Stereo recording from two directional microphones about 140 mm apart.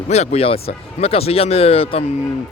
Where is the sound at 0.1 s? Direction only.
50° left (ahead or behind).